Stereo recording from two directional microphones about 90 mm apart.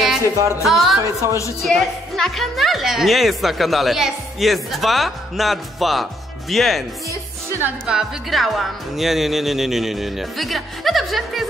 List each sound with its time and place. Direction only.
0.7 s a woman's voice: centre (ahead or behind)
1.0 s a woman's voice: 30° right (ahead or behind)
1.6 s a woman's voice: 5° left (ahead or behind)
7.6 s a woman's voice: 10° right (ahead or behind)